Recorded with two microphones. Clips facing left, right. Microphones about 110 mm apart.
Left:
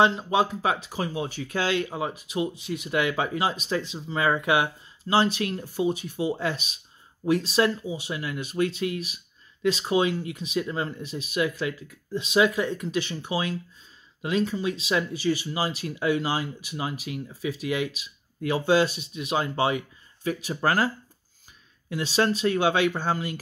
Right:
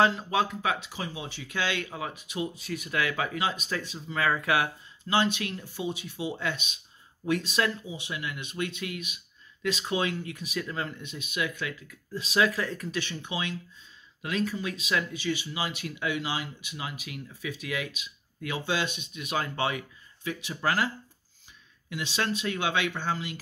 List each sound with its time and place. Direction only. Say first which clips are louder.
0.0 s speech: left 3 dB; 25° left (ahead or behind)
1.8 s speech: left 6 dB; 30° left (ahead or behind)
5.0 s speech: left 4 dB; 35° left (ahead or behind)
20.2 s speech: left 4 dB; 40° left (ahead or behind)